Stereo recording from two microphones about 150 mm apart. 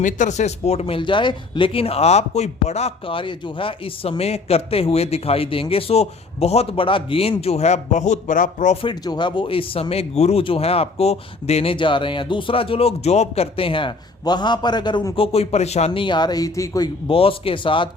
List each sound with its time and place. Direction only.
0.0 s speech: 55° left (ahead or behind)
8.8 s speech: 30° left (ahead or behind); by 15.9 s 45° left (ahead or behind)
15.9 s speech: 30° left (ahead or behind)
17.1 s speech: 40° left (ahead or behind)